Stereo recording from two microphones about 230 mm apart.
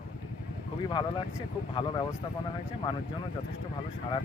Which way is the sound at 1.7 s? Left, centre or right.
Centre.